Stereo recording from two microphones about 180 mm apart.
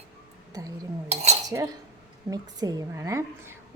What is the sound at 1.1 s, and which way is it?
Cutlery, 35° right (ahead or behind).